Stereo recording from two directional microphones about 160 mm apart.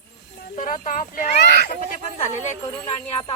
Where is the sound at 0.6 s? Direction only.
55° left (ahead or behind).